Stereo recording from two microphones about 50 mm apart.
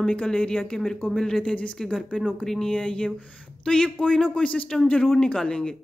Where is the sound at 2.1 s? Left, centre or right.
Centre.